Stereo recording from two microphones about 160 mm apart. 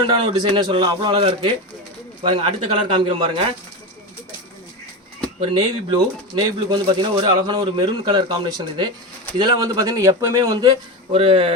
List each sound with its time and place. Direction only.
0.1 s a man's voice: 30° right (ahead or behind)
5.4 s speech: 30° right (ahead or behind)
11.1 s a man's voice: 35° right (ahead or behind)